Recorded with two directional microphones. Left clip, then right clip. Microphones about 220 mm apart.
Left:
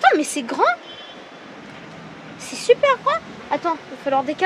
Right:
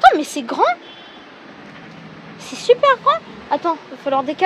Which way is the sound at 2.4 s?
20° right (ahead or behind).